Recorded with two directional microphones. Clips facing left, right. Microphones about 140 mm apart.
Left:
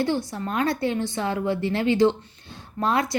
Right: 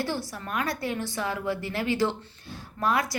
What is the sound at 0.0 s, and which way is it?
Speech, 20° left (ahead or behind).